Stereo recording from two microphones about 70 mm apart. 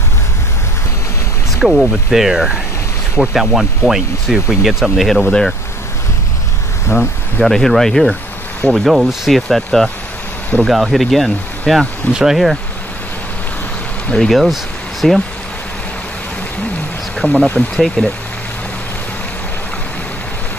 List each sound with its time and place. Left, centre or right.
1.6 s speech: centre
6.9 s speech: left
7.4 s speech: centre
12.1 s speech: centre
14.1 s speech: centre
17.2 s speech: centre